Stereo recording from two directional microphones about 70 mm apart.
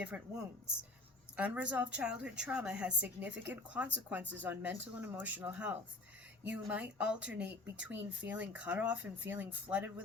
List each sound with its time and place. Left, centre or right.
0.0 s a woman's voice: centre